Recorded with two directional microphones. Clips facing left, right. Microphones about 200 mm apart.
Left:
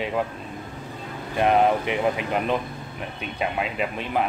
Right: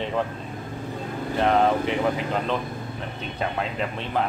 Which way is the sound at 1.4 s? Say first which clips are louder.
Left 1 dB; 15° left (ahead or behind).